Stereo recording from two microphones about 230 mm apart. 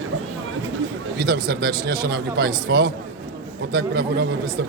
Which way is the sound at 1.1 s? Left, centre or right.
Right.